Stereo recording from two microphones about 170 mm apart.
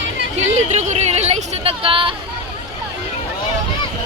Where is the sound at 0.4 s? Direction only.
45° right (ahead or behind).